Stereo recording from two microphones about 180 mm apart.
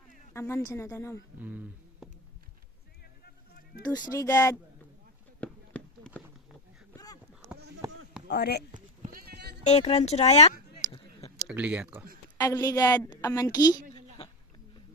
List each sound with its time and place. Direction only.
0.3 s a woman's voice: 15° left (ahead or behind)
1.4 s speech: 10° right (ahead or behind)
3.8 s a woman's voice: 20° left (ahead or behind)
5.4 s a sound: 10° left (ahead or behind)
8.3 s speech: 60° left (ahead or behind)
8.7 s sheep: 50° right (ahead or behind); by 9.6 s 65° right (ahead or behind)
9.6 s speech: 35° left (ahead or behind)
10.9 s a sound: 30° left (ahead or behind)
11.4 s speech: 5° right (ahead or behind)
12.4 s a woman's voice: 20° left (ahead or behind)